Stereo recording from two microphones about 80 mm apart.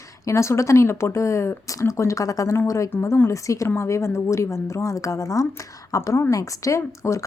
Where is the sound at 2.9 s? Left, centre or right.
Left.